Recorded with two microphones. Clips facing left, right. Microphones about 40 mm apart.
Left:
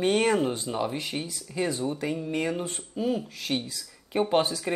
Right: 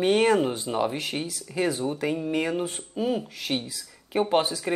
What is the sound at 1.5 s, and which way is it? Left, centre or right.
Speech, right.